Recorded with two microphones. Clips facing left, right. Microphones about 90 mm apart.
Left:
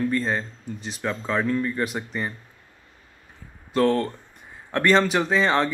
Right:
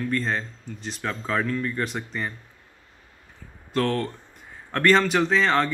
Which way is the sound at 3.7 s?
5° left (ahead or behind).